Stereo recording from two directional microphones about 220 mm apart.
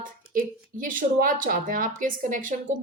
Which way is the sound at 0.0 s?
40° right (ahead or behind).